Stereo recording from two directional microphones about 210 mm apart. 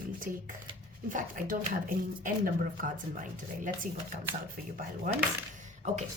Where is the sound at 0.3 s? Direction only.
40° right (ahead or behind).